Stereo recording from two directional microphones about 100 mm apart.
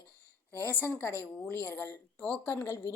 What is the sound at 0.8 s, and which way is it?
A woman's voice, 20° left (ahead or behind).